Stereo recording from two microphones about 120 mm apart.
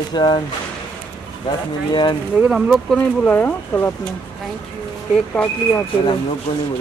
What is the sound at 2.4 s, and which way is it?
Speech, 5° right (ahead or behind).